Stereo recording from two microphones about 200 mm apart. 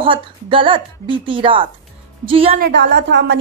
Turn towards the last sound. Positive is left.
turn(degrees=-55)  # may be behind; listen again after turning